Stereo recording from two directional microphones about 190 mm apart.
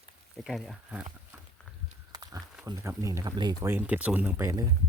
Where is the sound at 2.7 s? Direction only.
15° right (ahead or behind).